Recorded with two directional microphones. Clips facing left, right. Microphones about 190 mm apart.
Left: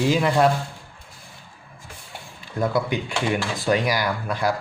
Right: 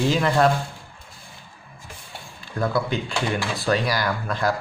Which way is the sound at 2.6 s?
15° left (ahead or behind).